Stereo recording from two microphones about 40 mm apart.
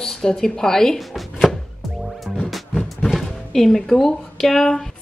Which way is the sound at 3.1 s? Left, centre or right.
Centre.